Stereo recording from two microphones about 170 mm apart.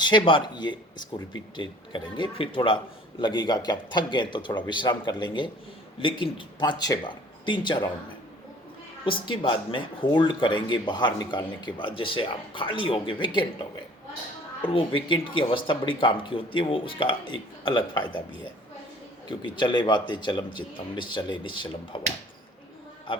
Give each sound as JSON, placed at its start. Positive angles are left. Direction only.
{"t": 0.0, "sound": "speech", "side_deg": 25}
{"t": 9.0, "sound": "speech", "side_deg": 30}
{"t": 14.6, "sound": "speech", "side_deg": 30}
{"t": 19.3, "sound": "speech", "side_deg": 30}
{"t": 23.1, "sound": "a man's voice", "side_deg": 30}